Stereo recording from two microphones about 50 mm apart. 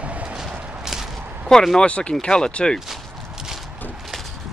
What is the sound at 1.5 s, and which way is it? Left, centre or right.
Speech, centre.